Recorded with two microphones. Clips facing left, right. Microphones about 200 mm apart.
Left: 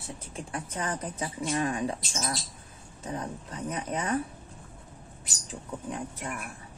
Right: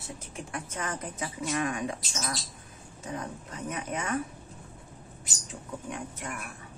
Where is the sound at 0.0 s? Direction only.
30° left (ahead or behind).